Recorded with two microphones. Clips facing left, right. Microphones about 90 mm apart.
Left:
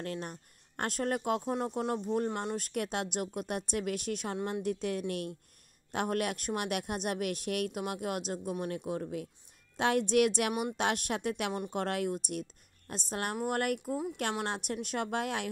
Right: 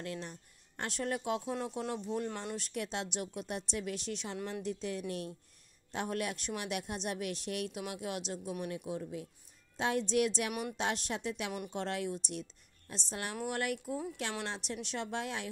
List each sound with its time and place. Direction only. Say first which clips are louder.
0.0 s a woman's voice: left 3 dB; 50° left (ahead or behind)